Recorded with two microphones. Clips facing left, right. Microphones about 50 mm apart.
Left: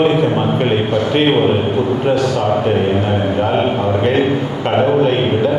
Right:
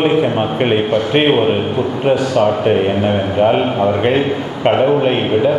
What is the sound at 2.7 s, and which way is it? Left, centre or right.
A man's voice, right.